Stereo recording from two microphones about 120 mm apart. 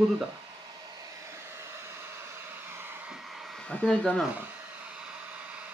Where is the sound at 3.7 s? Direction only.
10° left (ahead or behind).